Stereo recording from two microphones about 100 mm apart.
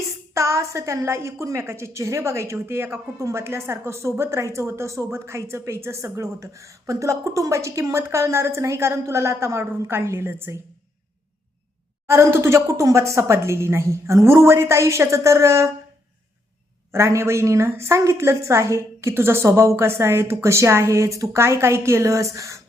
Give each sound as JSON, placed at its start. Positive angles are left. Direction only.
{"t": 0.3, "sound": "speech", "side_deg": -30}
{"t": 12.0, "sound": "speech", "side_deg": -25}
{"t": 16.9, "sound": "speech", "side_deg": -30}
{"t": 22.4, "sound": "a sound", "side_deg": -30}